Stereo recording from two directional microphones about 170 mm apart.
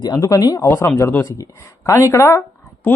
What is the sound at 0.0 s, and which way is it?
Speech, 25° left (ahead or behind).